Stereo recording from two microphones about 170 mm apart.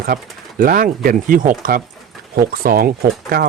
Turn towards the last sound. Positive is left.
turn(degrees=-60)  # may be behind; listen again after turning